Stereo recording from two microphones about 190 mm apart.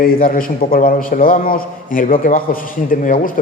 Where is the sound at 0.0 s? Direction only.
50° left (ahead or behind).